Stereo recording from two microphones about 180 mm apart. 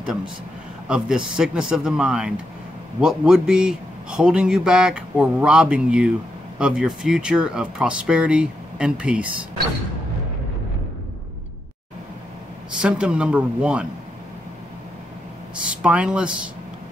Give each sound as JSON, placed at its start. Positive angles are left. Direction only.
{"t": 0.8, "sound": "a man's voice", "side_deg": -5}
{"t": 12.7, "sound": "a man's voice", "side_deg": -5}
{"t": 15.6, "sound": "a man's voice", "side_deg": -5}